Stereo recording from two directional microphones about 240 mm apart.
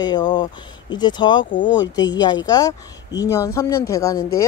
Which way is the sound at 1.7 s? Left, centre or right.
Left.